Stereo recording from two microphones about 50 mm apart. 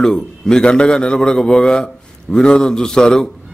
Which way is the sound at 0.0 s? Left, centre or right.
Centre.